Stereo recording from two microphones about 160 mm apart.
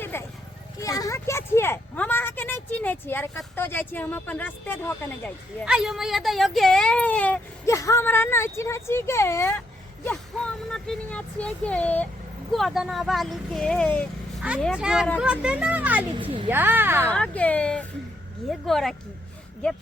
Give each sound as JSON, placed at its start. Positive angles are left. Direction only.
{"t": 0.0, "sound": "vehicle", "side_deg": 15}
{"t": 0.8, "sound": "speech", "side_deg": 20}
{"t": 5.6, "sound": "speech", "side_deg": -5}
{"t": 10.1, "sound": "speech", "side_deg": 5}
{"t": 14.6, "sound": "speech", "side_deg": -5}
{"t": 16.1, "sound": "speech", "side_deg": -35}
{"t": 16.5, "sound": "speech", "side_deg": -15}
{"t": 17.1, "sound": "speech", "side_deg": 10}